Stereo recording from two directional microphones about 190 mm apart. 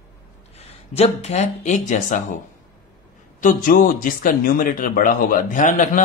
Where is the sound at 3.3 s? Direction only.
45° left (ahead or behind).